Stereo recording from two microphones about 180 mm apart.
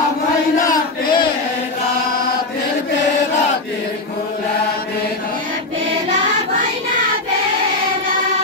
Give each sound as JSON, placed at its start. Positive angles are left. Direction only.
{"t": 0.6, "sound": "chant", "side_deg": 20}